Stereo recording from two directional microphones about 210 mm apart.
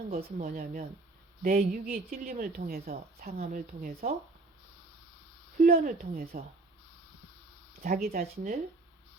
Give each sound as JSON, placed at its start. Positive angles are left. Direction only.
{"t": 0.1, "sound": "a woman's voice", "side_deg": -45}
{"t": 5.5, "sound": "a woman's voice", "side_deg": -40}
{"t": 7.8, "sound": "a woman's voice", "side_deg": -45}